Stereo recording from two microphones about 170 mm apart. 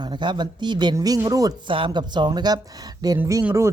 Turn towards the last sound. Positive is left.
turn(degrees=-15)  # may be behind; listen again after turning